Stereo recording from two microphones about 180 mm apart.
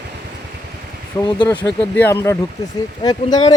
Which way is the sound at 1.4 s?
10° left (ahead or behind).